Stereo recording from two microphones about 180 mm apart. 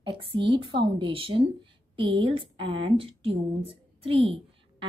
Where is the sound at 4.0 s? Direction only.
30° right (ahead or behind).